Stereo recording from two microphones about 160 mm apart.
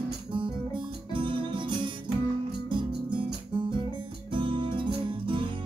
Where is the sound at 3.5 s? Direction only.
30° right (ahead or behind).